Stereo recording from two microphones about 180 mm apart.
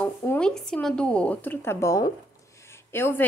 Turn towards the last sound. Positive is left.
turn(degrees=10)  # may be behind; listen again after turning